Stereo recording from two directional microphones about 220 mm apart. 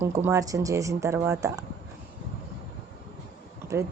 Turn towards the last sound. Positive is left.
turn(degrees=-15)  # may be behind; listen again after turning